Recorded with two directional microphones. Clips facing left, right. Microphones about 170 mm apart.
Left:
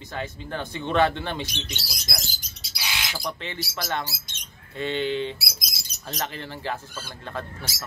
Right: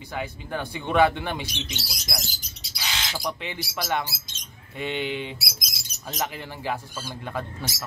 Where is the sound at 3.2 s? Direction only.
10° right (ahead or behind).